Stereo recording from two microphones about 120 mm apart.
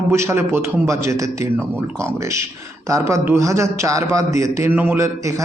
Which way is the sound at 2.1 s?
25° right (ahead or behind).